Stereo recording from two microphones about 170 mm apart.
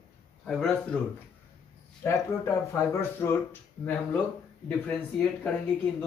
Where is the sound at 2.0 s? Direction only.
15° left (ahead or behind).